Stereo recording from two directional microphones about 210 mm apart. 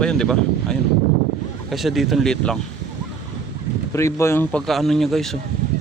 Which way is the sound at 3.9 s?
15° left (ahead or behind).